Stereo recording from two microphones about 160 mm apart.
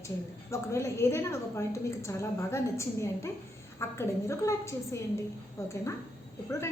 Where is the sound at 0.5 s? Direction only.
15° left (ahead or behind).